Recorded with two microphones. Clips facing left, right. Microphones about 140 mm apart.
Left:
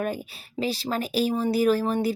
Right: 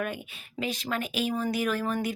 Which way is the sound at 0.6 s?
35° left (ahead or behind).